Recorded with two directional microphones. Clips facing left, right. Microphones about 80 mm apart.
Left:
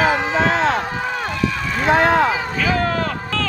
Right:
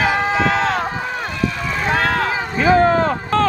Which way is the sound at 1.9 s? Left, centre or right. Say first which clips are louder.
Left 5 dB; left.